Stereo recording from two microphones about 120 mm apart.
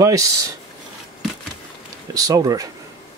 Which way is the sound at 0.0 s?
30° right (ahead or behind).